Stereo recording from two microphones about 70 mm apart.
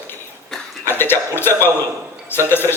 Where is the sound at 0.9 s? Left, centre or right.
Left.